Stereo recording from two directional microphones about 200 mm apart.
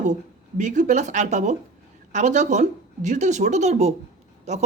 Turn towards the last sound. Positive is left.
turn(degrees=-35)  # may be behind; listen again after turning